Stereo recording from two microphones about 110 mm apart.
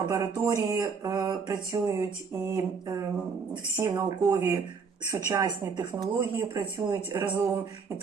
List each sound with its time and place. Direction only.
0.0 s speech: 35° right (ahead or behind)
6.1 s speech: 20° right (ahead or behind)